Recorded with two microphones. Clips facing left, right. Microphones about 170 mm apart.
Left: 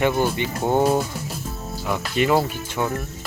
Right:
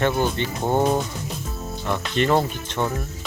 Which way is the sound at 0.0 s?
10° left (ahead or behind).